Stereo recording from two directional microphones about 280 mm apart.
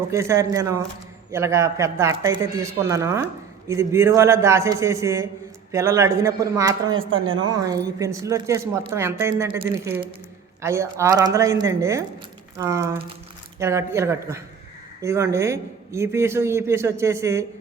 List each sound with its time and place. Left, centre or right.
0.1 s speech: centre
6.9 s speech: right
7.4 s speech: centre